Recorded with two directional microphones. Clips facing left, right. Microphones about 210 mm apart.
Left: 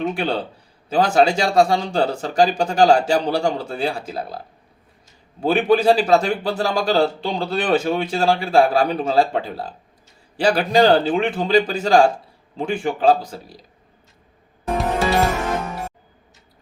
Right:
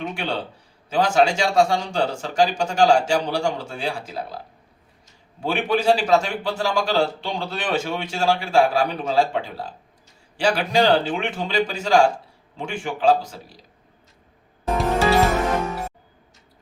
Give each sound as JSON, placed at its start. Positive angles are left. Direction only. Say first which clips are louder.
{"t": 0.0, "sound": "a man's voice", "louder": "left 5 dB", "side_deg": 35}
{"t": 5.4, "sound": "a man's voice", "louder": "left 6 dB", "side_deg": 35}